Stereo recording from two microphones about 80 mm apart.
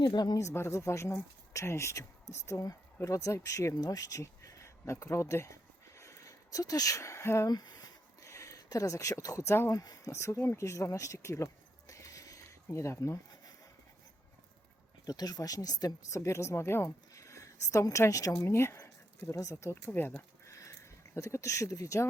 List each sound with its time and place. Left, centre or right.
0.0 s speech: left
0.3 s speech: left
6.0 s a sound: left
7.4 s speech: left
8.2 s speech: left
9.8 s speech: left
15.0 s speech: left
16.0 s speech: left
18.4 s speech: left
19.7 s a sound: left
21.2 s speech: left